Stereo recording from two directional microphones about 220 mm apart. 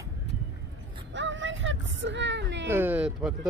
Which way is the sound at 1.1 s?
55° right (ahead or behind).